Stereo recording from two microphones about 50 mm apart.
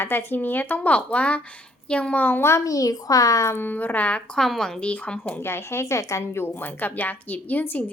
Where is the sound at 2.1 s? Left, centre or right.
Left.